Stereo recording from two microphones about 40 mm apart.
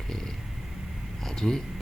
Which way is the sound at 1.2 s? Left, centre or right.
Centre.